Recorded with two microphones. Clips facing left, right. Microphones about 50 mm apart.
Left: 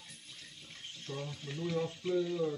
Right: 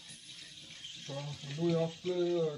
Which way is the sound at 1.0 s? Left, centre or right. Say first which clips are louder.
Left 2 dB; centre.